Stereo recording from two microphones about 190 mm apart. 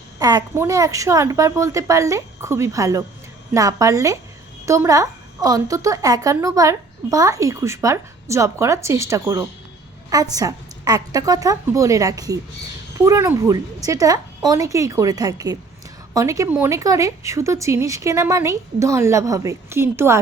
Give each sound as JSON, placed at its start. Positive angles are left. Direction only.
{"t": 0.2, "sound": "a woman's voice", "side_deg": -20}